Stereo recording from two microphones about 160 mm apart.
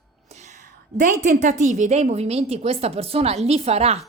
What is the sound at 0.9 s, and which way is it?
A woman's voice, 50° right (ahead or behind).